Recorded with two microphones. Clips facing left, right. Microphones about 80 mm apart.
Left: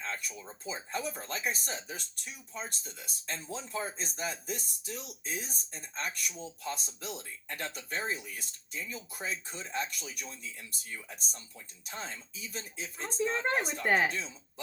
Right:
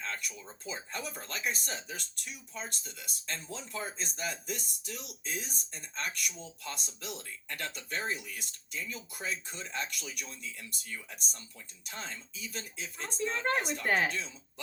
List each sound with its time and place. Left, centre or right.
0.0 s speech: left